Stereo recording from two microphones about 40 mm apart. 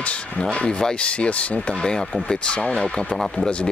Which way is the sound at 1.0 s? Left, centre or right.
Left.